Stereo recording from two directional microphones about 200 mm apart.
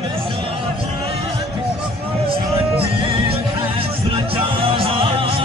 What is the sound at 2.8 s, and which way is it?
Music, 30° right (ahead or behind).